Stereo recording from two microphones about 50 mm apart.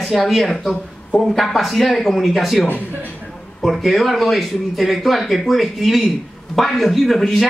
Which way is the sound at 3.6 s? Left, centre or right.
Centre.